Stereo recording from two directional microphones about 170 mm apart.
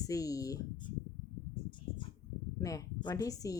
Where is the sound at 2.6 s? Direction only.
20° left (ahead or behind).